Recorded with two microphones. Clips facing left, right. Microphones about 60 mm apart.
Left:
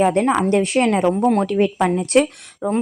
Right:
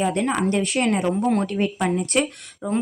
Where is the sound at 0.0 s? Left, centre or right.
Left.